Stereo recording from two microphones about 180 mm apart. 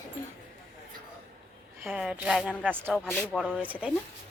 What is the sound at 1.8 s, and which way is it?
A woman's voice, 5° right (ahead or behind).